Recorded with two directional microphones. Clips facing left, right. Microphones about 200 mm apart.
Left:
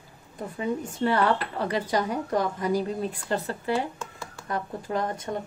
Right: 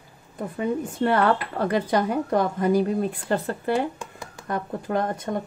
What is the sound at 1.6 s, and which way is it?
A woman's voice, 55° right (ahead or behind).